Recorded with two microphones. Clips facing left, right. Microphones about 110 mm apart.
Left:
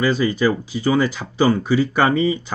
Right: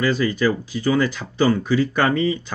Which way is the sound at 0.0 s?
15° left (ahead or behind).